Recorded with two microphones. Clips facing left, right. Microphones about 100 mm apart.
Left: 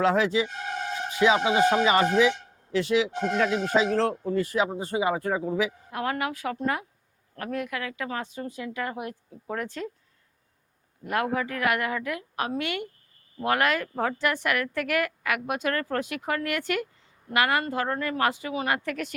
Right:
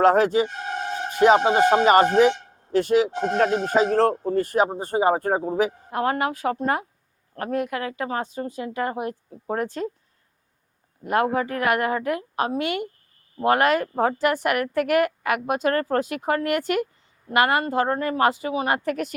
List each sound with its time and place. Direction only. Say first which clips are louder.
0.0 s speech: right 5 dB; 50° right (ahead or behind)
11.0 s speech: right 5 dB; 30° right (ahead or behind)